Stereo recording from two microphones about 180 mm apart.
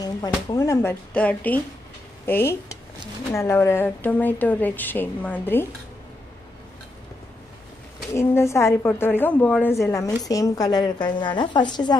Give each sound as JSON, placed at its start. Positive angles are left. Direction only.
{"t": 0.0, "sound": "a woman's voice", "side_deg": 20}
{"t": 8.1, "sound": "a woman's voice", "side_deg": 15}